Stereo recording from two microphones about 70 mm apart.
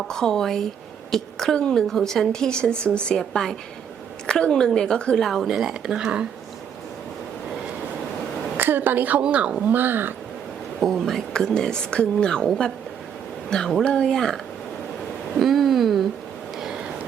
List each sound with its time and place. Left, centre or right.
0.0 s a woman's voice: centre
8.5 s a woman's voice: right
9.7 s speech: right
10.8 s speech: centre
15.4 s a sound: centre